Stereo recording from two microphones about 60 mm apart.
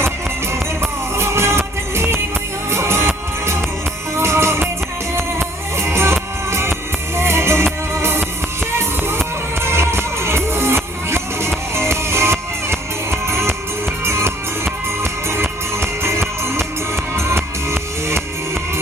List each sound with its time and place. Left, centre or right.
0.5 s music: right
5.7 s music: right